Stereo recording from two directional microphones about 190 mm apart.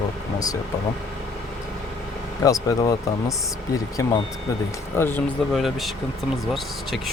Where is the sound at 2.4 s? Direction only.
20° left (ahead or behind).